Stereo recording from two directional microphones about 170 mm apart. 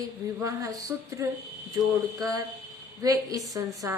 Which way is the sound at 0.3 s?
20° right (ahead or behind).